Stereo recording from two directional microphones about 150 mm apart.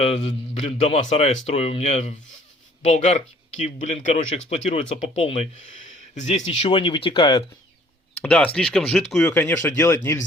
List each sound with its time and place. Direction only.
0.0 s speech: 45° left (ahead or behind)
8.2 s speech: 10° left (ahead or behind)